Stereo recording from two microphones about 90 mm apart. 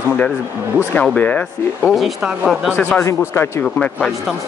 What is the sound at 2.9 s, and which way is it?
Speech, 30° left (ahead or behind).